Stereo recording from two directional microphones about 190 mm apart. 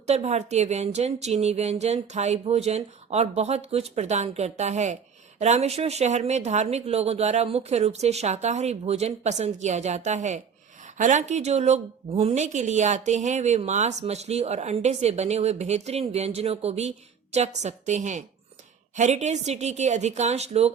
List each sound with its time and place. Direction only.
0.1 s a woman's voice: 35° right (ahead or behind)